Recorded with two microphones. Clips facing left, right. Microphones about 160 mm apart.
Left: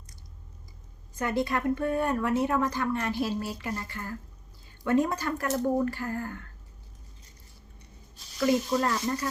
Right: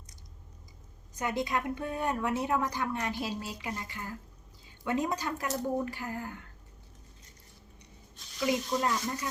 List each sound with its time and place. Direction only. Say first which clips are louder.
1.1 s a woman's voice: left 3 dB; 15° right (ahead or behind)
8.4 s a woman's voice: left 5 dB; 15° right (ahead or behind)